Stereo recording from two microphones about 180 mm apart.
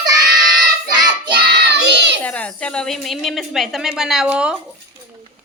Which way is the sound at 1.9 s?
75° right (ahead or behind).